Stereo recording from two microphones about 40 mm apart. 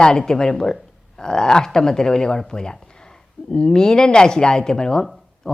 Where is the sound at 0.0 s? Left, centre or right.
Centre.